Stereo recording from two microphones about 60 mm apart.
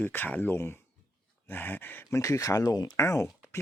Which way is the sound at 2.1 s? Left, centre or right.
Left.